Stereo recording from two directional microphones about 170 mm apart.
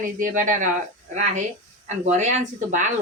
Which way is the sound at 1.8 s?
45° right (ahead or behind).